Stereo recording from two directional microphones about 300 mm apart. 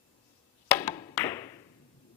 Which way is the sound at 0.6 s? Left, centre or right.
Centre.